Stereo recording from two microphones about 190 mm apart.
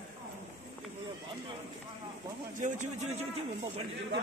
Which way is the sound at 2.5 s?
40° right (ahead or behind).